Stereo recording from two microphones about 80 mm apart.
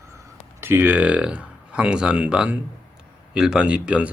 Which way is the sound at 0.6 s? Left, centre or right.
Right.